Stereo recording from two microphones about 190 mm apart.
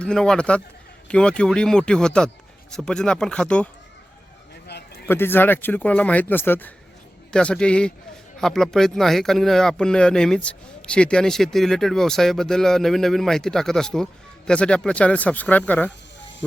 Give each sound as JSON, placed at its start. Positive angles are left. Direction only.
{"t": 0.0, "sound": "speech", "side_deg": 5}
{"t": 4.7, "sound": "a sound", "side_deg": 60}
{"t": 5.0, "sound": "speech", "side_deg": 10}